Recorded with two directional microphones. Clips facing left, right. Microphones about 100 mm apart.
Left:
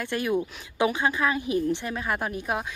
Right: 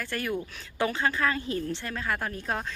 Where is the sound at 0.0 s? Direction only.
20° left (ahead or behind).